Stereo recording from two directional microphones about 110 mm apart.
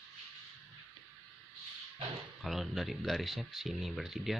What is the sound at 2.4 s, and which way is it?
Speech, centre (ahead or behind).